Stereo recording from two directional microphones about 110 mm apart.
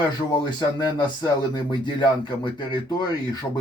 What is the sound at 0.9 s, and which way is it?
Speech, 45° left (ahead or behind).